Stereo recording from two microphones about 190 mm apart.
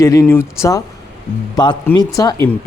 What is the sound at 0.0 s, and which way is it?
Speech, 15° left (ahead or behind).